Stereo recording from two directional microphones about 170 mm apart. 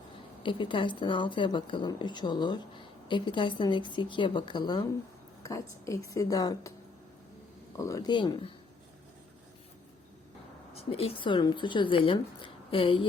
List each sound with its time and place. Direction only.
0.4 s a woman's voice: 30° left (ahead or behind)
7.8 s a woman's voice: 20° left (ahead or behind)
10.8 s a woman's voice: 35° left (ahead or behind)